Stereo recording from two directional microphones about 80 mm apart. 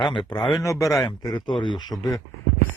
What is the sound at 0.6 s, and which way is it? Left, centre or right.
Speech, left.